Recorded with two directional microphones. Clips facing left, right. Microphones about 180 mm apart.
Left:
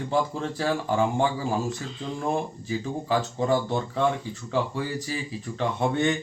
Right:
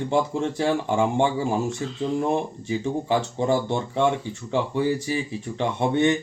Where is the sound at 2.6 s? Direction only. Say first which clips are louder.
Right 4 dB; 20° right (ahead or behind).